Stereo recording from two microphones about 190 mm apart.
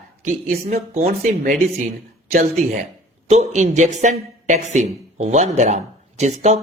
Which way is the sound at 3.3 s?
40° right (ahead or behind).